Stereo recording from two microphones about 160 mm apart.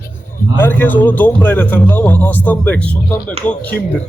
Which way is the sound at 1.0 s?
10° left (ahead or behind).